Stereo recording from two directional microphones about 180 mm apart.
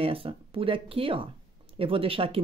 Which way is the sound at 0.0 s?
30° right (ahead or behind).